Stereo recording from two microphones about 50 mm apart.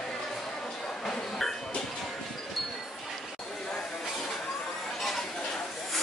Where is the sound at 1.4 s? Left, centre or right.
Centre.